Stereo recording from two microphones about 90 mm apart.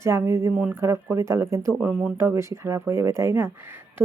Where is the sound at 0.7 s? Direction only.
30° right (ahead or behind).